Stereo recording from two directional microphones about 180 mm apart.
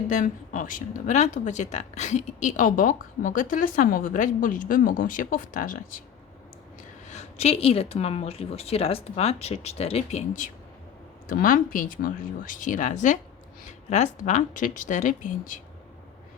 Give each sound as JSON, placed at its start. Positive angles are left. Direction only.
{"t": 0.1, "sound": "speech", "side_deg": 45}
{"t": 7.1, "sound": "speech", "side_deg": 40}